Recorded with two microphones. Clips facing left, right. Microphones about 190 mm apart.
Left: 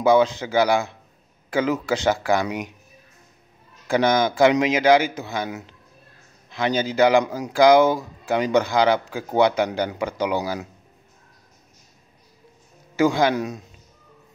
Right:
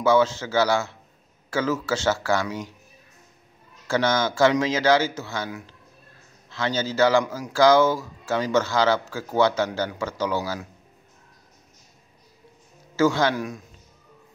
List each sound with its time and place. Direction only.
0.0 s a man's voice: 15° left (ahead or behind)
3.8 s a man's voice: 15° left (ahead or behind)
12.9 s a man's voice: 15° left (ahead or behind)